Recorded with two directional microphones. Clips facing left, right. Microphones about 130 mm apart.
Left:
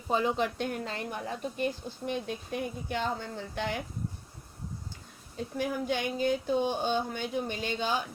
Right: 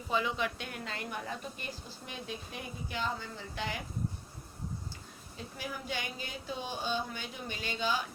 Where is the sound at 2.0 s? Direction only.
55° left (ahead or behind).